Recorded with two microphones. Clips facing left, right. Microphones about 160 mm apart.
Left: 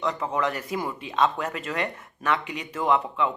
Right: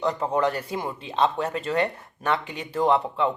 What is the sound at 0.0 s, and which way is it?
Speech, 30° right (ahead or behind).